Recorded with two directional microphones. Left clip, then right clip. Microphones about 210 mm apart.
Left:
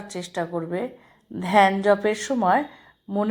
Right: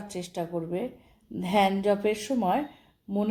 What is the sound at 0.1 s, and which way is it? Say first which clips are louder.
A woman's voice: left 5 dB; 10° left (ahead or behind).